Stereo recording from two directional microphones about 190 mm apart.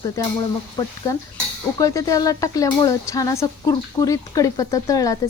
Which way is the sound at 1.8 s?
15° left (ahead or behind).